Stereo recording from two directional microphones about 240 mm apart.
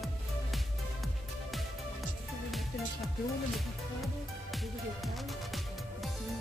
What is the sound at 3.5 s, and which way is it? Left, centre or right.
Music, centre.